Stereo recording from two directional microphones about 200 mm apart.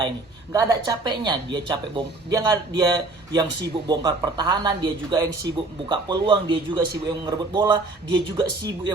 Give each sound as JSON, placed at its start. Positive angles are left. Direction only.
{"t": 0.5, "sound": "speech", "side_deg": -20}